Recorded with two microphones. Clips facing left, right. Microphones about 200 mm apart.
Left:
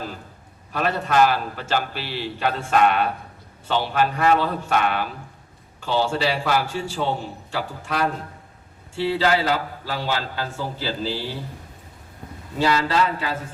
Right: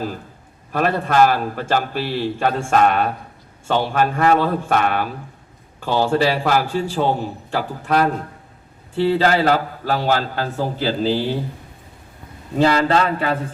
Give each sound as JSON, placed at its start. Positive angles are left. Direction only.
{"t": 0.7, "sound": "a man's voice", "side_deg": -55}
{"t": 12.5, "sound": "speech", "side_deg": -55}